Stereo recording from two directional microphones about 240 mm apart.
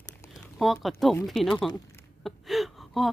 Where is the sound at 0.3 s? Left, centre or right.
Centre.